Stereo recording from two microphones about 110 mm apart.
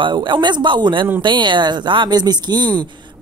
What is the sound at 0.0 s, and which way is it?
Speech, 45° right (ahead or behind).